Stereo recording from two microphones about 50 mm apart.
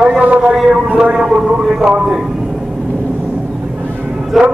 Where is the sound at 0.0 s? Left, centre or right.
Right.